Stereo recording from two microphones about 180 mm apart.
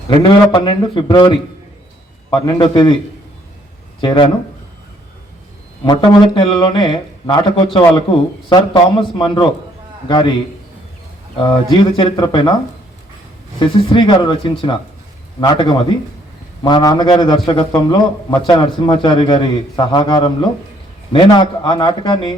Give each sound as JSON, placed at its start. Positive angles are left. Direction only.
{"t": 0.1, "sound": "speech", "side_deg": 25}
{"t": 4.0, "sound": "speech", "side_deg": 25}
{"t": 5.8, "sound": "speech", "side_deg": 25}
{"t": 11.3, "sound": "speech", "side_deg": 30}
{"t": 13.6, "sound": "speech", "side_deg": 25}